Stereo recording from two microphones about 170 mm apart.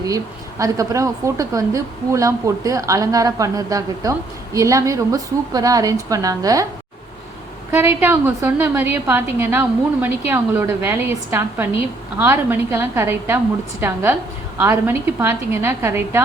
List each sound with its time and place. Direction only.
0.6 s a woman's voice: 20° right (ahead or behind)
7.7 s a woman's voice: 15° right (ahead or behind)